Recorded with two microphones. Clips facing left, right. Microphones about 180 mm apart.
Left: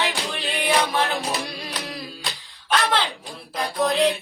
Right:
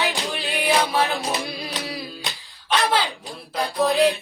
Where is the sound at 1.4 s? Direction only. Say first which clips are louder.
Right 2 dB; 5° right (ahead or behind).